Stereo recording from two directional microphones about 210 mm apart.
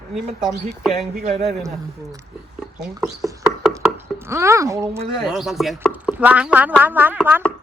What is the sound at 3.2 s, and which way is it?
Speech, 15° right (ahead or behind).